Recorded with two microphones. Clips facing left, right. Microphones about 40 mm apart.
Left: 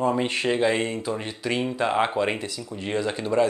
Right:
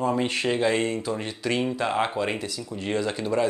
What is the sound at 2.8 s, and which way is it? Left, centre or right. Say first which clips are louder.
Speech: even; centre.